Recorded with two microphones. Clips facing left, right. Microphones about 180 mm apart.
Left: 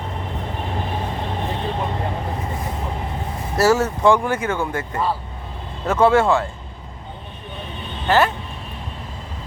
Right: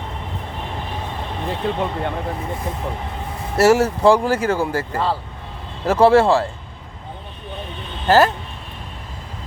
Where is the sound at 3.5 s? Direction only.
25° right (ahead or behind).